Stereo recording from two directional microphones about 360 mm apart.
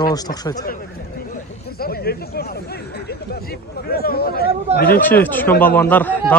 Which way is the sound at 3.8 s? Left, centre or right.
Left.